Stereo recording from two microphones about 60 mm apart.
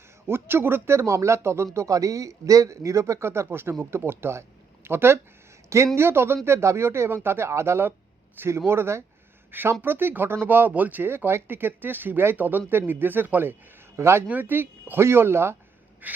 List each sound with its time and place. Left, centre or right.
0.3 s speech: right
5.6 s speech: right
6.0 s speech: right
9.5 s speech: right
14.3 s speech: right
16.0 s a sound: right